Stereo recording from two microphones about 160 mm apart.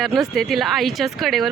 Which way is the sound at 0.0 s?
Centre (ahead or behind).